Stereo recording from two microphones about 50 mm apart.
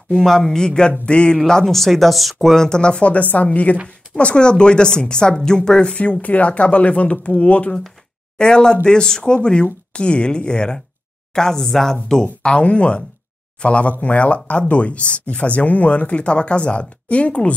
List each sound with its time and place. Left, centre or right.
0.1 s speech: centre
1.4 s speech: centre; by 7.7 s left
8.4 s speech: centre
12.5 s speech: left